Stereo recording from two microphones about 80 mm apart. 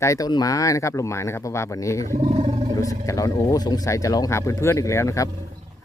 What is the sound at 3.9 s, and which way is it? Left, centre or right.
Speech, left.